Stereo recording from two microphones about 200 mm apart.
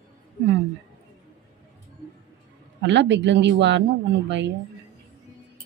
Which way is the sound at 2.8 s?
60° right (ahead or behind).